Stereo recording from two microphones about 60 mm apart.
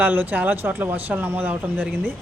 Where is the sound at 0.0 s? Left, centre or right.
Right.